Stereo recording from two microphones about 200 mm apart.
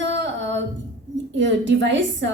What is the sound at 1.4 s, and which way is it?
Speech, 65° right (ahead or behind).